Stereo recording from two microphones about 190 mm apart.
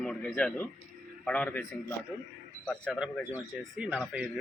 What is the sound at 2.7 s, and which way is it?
Speech, 5° left (ahead or behind).